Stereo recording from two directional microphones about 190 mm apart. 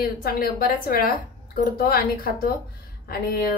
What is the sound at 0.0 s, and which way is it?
Speech, 50° left (ahead or behind).